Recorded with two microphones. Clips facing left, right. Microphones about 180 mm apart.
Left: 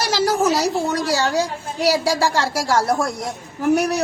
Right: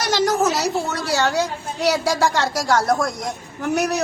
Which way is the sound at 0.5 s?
35° left (ahead or behind).